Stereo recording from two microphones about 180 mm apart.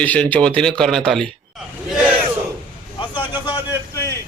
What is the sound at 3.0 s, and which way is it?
Vehicle, 25° left (ahead or behind).